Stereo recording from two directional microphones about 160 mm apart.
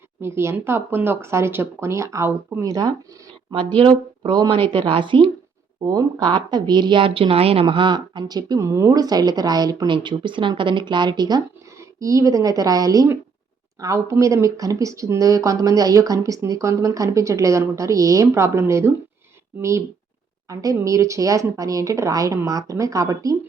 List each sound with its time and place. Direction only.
0.2 s speech: 15° right (ahead or behind)
20.5 s speech: 20° right (ahead or behind)